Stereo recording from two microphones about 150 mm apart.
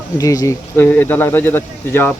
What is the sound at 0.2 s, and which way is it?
Speech, 20° left (ahead or behind).